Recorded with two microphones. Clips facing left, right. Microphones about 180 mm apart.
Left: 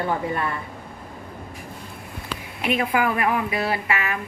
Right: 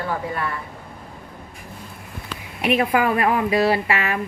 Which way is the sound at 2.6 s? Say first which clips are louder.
Right 3 dB; 30° right (ahead or behind).